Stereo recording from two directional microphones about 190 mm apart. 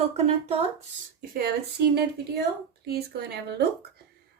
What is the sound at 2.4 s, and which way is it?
Speech, 55° right (ahead or behind).